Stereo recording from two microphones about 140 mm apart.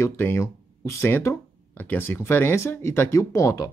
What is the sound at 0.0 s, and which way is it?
Speech, 20° left (ahead or behind).